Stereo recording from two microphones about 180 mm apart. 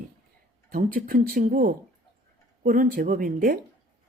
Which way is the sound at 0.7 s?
50° right (ahead or behind).